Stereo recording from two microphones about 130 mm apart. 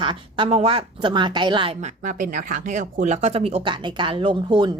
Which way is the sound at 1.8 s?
85° right.